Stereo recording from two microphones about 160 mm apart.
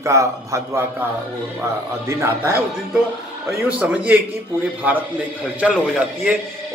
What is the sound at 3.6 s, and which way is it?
Speech, 10° right (ahead or behind).